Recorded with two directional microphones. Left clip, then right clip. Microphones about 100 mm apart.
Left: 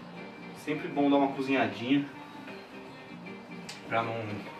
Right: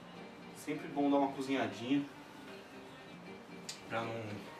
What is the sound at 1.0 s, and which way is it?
A man's voice, 15° right (ahead or behind).